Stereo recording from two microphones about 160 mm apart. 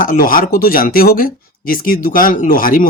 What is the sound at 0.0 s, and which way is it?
Speech, 60° left (ahead or behind).